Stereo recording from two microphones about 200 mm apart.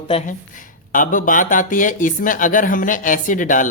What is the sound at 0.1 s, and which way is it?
Speech, 35° left (ahead or behind).